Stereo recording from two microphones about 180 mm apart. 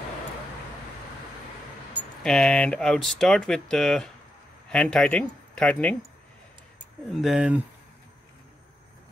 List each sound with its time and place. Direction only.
2.2 s speech: centre (ahead or behind)
7.1 s speech: centre (ahead or behind)